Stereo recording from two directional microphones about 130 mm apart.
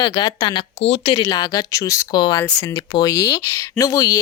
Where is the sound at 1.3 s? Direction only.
30° left (ahead or behind).